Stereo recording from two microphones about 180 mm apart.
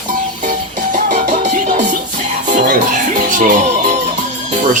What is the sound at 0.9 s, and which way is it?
Music, 40° right (ahead or behind).